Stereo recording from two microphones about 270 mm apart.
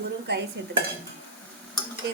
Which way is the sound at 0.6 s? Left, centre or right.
Right.